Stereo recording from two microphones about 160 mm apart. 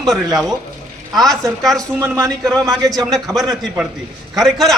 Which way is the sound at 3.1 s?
Centre (ahead or behind).